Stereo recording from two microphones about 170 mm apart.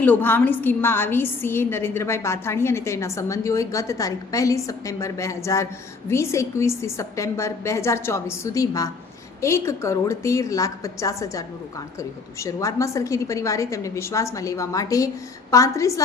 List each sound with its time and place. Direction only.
0.0 s a woman's voice: 10° left (ahead or behind)